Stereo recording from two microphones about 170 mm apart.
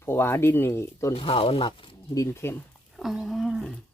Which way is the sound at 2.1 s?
15° left (ahead or behind).